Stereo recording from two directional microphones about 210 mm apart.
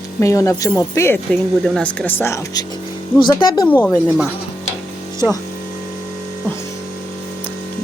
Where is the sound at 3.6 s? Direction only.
10° left (ahead or behind).